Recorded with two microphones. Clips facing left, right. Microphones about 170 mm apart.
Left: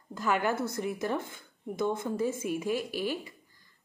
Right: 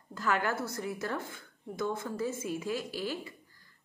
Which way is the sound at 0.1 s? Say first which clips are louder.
Left 2 dB; 15° left (ahead or behind).